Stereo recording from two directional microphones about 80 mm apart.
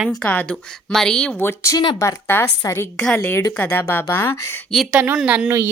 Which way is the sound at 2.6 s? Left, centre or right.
Left.